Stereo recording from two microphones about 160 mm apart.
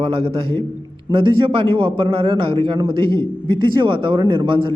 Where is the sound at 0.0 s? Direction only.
35° right (ahead or behind).